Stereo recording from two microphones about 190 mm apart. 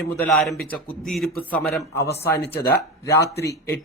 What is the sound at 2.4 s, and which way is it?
Speech, 55° left (ahead or behind).